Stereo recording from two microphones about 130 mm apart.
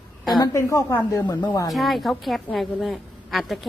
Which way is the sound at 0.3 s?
25° left (ahead or behind).